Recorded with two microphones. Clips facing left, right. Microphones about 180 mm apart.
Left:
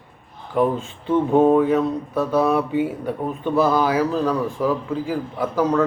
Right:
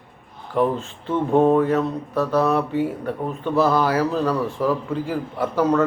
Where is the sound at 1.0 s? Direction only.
15° left (ahead or behind).